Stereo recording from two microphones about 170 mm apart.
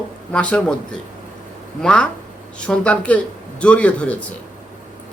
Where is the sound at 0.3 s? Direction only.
5° left (ahead or behind).